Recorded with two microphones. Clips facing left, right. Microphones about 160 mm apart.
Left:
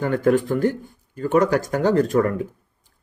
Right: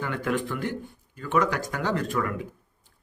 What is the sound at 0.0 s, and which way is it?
Speech, 45° left (ahead or behind).